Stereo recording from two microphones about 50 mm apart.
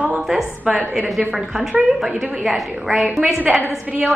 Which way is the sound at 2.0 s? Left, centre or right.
Centre.